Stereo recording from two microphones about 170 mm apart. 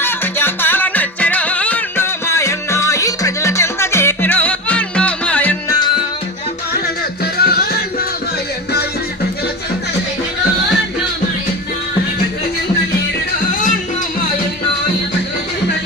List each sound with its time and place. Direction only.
0.0 s music: 15° left (ahead or behind)
7.3 s music: 65° left (ahead or behind)